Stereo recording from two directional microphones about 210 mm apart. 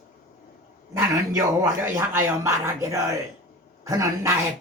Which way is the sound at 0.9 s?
15° right (ahead or behind).